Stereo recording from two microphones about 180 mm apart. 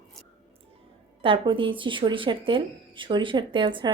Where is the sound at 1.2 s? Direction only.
30° right (ahead or behind).